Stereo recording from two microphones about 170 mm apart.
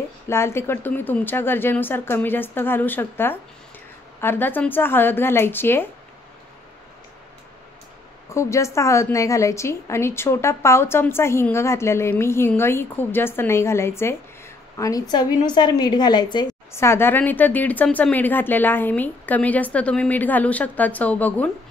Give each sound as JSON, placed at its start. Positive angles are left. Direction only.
{"t": 0.3, "sound": "a woman's voice", "side_deg": 15}
{"t": 8.3, "sound": "a woman's voice", "side_deg": 15}